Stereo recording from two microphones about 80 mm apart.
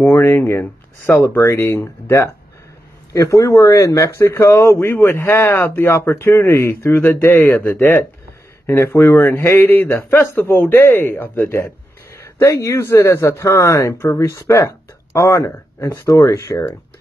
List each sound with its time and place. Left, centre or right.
0.0 s speech: left